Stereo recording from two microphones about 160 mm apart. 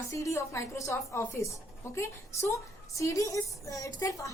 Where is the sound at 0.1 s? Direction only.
20° left (ahead or behind).